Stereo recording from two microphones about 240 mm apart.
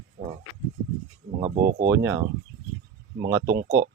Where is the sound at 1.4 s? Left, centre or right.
Right.